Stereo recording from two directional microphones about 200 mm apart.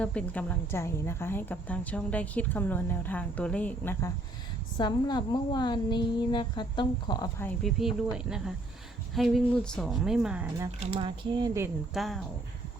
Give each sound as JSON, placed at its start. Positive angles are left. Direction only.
{"t": 0.0, "sound": "a woman's voice", "side_deg": 5}
{"t": 4.8, "sound": "a woman's voice", "side_deg": 20}
{"t": 7.6, "sound": "speech", "side_deg": 0}
{"t": 10.8, "sound": "speech", "side_deg": -30}
{"t": 11.9, "sound": "speech", "side_deg": 0}